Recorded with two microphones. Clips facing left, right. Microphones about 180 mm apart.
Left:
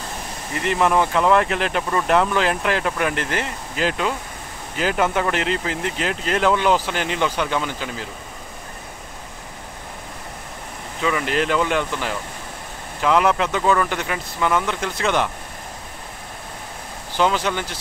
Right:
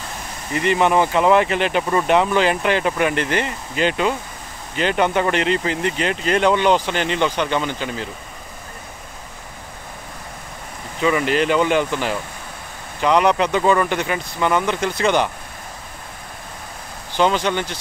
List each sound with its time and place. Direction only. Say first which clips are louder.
0.6 s speech: right 2 dB; centre (ahead or behind)
11.0 s speech: right 4 dB; 5° right (ahead or behind)
17.2 s speech: right 2 dB; 5° left (ahead or behind)